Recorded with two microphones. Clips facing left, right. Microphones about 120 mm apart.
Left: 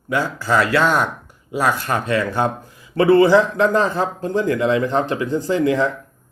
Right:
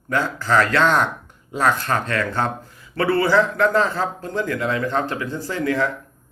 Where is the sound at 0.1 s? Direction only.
10° left (ahead or behind).